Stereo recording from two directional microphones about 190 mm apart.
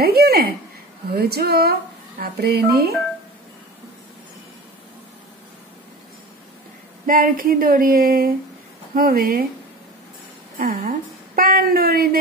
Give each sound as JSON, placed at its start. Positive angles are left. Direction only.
{"t": 0.0, "sound": "a sound", "side_deg": -55}
{"t": 1.1, "sound": "speech", "side_deg": -55}
{"t": 7.1, "sound": "a woman's voice", "side_deg": -45}
{"t": 10.6, "sound": "a woman's voice", "side_deg": -50}